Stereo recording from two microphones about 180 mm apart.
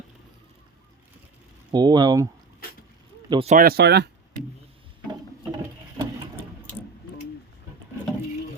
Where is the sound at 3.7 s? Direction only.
65° right (ahead or behind).